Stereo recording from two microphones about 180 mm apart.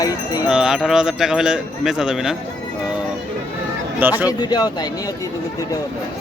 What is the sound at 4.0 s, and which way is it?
Speech, 10° right (ahead or behind).